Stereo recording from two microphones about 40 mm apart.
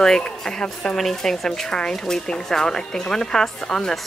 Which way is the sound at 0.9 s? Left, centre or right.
Centre.